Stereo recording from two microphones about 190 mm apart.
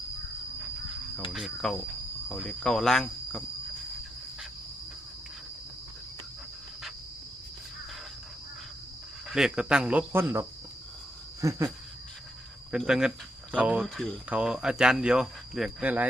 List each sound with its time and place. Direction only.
1.3 s speech: centre (ahead or behind)
9.3 s speech: 5° right (ahead or behind)
11.3 s cricket: 15° right (ahead or behind)
12.7 s speech: 5° right (ahead or behind)